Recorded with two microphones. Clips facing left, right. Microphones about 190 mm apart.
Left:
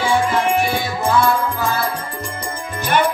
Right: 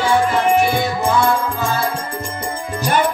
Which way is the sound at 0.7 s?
15° right (ahead or behind).